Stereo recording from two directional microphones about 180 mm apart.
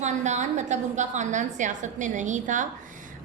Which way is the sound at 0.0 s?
40° right (ahead or behind).